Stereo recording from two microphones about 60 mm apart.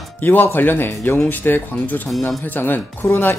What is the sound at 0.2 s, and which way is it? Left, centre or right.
Speech, left.